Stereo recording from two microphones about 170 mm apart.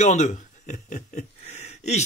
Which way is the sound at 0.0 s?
45° left (ahead or behind).